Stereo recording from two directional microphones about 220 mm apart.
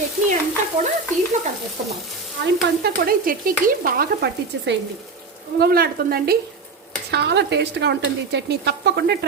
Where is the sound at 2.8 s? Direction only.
45° right (ahead or behind).